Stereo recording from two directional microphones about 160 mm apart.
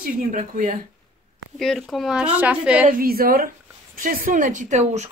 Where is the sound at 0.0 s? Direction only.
55° right (ahead or behind).